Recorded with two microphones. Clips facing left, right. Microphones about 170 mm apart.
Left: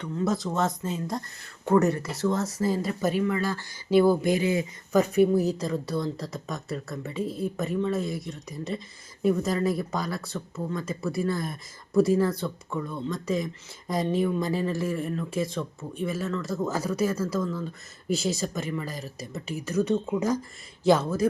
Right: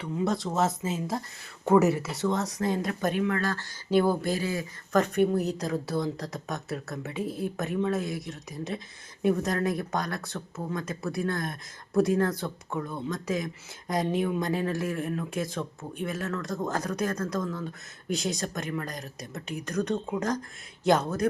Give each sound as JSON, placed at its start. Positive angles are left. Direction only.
{"t": 0.3, "sound": "speech", "side_deg": 0}
{"t": 4.9, "sound": "speech", "side_deg": 5}